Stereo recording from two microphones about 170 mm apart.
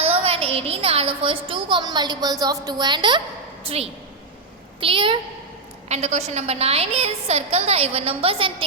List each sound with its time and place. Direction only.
0.0 s a woman's voice: 35° right (ahead or behind)
5.9 s a woman's voice: 40° right (ahead or behind)